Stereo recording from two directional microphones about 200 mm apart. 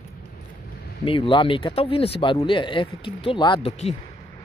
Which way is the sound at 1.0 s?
25° left (ahead or behind).